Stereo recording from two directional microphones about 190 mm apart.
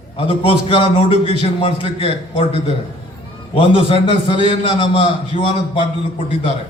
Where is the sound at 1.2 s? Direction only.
30° left (ahead or behind).